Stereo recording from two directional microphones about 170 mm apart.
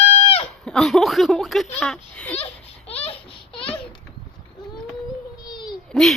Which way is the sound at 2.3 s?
35° left (ahead or behind).